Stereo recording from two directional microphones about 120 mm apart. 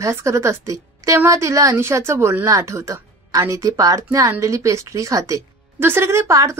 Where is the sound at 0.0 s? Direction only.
25° right (ahead or behind).